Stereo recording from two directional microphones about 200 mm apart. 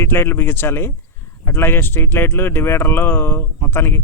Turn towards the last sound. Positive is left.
turn(degrees=10)  # may be behind; listen again after turning